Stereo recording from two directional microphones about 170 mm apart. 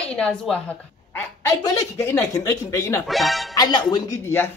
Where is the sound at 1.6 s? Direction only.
20° left (ahead or behind).